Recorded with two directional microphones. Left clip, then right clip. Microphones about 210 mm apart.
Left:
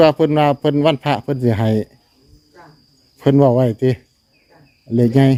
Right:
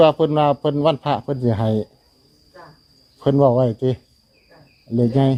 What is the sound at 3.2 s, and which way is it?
Speech, 30° left (ahead or behind).